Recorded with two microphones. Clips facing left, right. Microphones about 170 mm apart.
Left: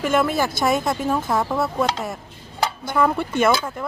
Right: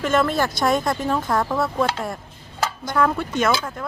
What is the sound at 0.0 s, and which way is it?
A woman's voice, 10° left (ahead or behind).